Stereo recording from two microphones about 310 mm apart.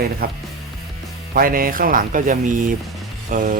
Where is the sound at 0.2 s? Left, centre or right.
Right.